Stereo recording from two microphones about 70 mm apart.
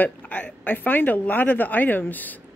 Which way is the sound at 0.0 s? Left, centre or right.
Left.